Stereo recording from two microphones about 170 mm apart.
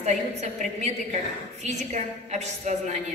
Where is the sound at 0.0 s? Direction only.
40° right (ahead or behind).